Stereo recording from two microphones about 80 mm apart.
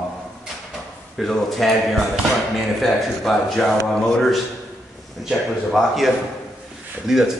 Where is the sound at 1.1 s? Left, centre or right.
Centre.